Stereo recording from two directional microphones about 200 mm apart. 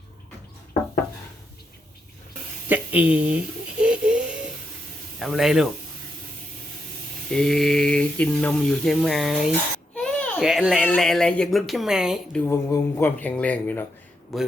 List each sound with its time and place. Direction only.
2.6 s speech: 10° right (ahead or behind)
3.8 s a sound: 5° right (ahead or behind)
5.2 s speech: centre (ahead or behind)
7.3 s a child's voice: centre (ahead or behind)
12.5 s speech: 10° left (ahead or behind)